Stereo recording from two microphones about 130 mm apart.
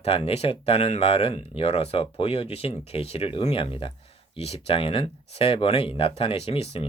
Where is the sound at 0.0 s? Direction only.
50° left (ahead or behind).